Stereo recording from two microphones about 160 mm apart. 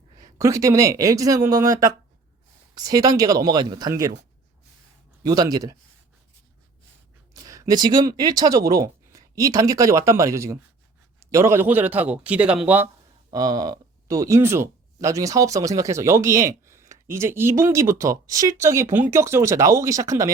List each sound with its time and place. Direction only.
0.2 s speech: 20° right (ahead or behind)
5.2 s speech: 25° right (ahead or behind)
7.3 s a man's voice: 20° right (ahead or behind)
13.3 s speech: 25° right (ahead or behind)